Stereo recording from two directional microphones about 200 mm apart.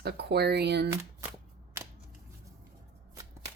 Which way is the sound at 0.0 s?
55° right (ahead or behind).